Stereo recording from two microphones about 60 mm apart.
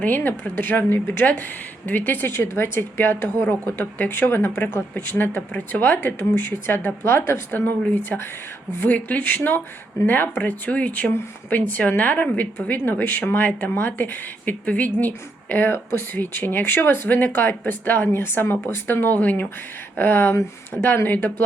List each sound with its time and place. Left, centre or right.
0.0 s speech: left
1.2 s speech: left